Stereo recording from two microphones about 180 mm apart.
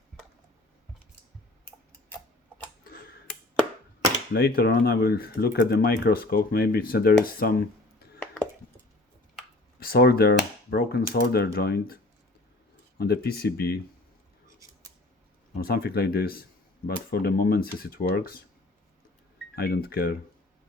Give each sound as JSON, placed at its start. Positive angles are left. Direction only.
{"t": 4.3, "sound": "speech", "side_deg": 60}
{"t": 9.8, "sound": "speech", "side_deg": 60}
{"t": 13.0, "sound": "speech", "side_deg": 60}
{"t": 15.5, "sound": "speech", "side_deg": 60}
{"t": 19.5, "sound": "speech", "side_deg": 60}